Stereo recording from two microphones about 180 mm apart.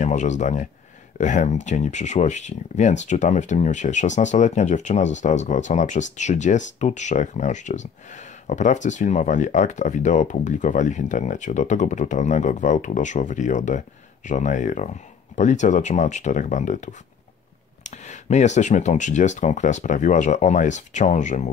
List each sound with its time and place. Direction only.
0.0 s speech: 40° left (ahead or behind)